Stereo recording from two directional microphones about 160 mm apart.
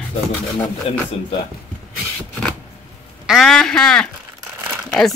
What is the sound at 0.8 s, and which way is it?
Speech, 35° left (ahead or behind).